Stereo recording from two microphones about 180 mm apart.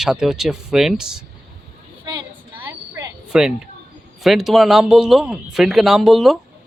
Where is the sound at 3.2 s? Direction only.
5° right (ahead or behind).